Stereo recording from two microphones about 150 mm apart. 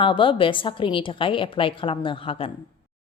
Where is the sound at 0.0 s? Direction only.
35° left (ahead or behind).